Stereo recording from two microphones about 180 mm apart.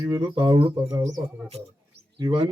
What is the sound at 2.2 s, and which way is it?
Speech, 25° right (ahead or behind).